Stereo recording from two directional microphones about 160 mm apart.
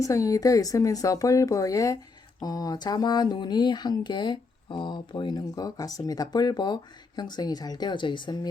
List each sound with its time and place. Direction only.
0.0 s speech: 20° left (ahead or behind)